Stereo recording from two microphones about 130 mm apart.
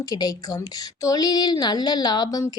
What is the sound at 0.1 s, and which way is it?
A woman's voice, 30° left (ahead or behind).